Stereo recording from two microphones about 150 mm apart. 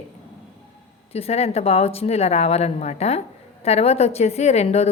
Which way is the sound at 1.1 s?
45° left (ahead or behind).